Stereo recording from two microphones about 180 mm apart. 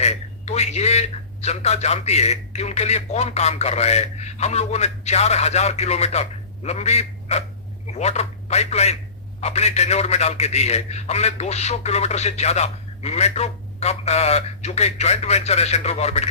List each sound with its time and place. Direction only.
0.0 s a man's voice: 35° left (ahead or behind)